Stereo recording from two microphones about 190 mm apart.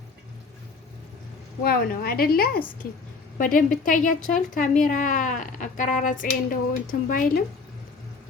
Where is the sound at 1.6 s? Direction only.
55° left (ahead or behind).